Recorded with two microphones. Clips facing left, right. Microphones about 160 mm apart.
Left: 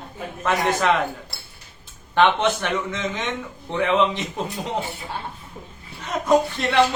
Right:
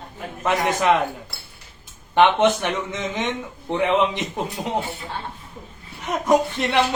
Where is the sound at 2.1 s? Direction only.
15° right (ahead or behind).